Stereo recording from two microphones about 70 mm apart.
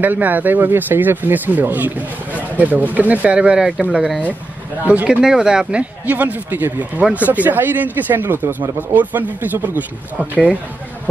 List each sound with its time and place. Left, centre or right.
0.0 s speech: right